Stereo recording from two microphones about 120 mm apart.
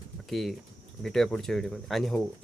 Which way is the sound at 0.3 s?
Centre (ahead or behind).